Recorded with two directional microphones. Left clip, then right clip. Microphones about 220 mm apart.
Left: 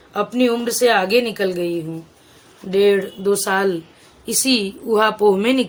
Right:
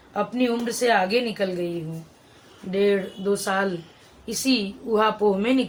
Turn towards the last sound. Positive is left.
turn(degrees=55)  # may be behind; listen again after turning